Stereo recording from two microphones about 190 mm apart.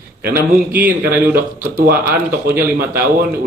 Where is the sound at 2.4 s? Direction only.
55° right (ahead or behind).